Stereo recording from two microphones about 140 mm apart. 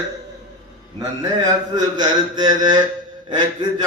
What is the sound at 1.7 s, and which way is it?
Speech, 30° right (ahead or behind).